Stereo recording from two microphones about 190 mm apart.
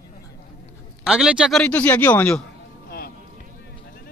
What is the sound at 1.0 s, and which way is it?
A man's voice, 5° right (ahead or behind).